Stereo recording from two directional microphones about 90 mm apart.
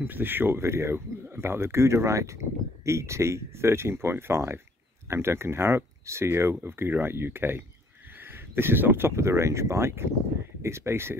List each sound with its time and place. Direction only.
0.0 s speech: 20° right (ahead or behind)